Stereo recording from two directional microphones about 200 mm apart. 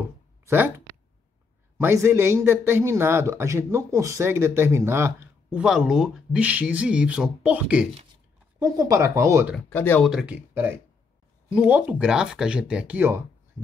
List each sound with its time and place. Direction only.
0.5 s speech: 10° right (ahead or behind)
1.8 s speech: 10° right (ahead or behind)
8.5 s speech: 15° right (ahead or behind)
9.7 s speech: 10° left (ahead or behind)
10.0 s speech: 5° right (ahead or behind)